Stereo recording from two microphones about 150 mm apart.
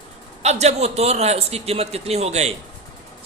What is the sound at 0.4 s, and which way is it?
A man's voice, 45° right (ahead or behind).